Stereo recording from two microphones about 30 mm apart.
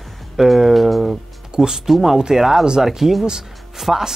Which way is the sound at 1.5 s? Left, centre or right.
Right.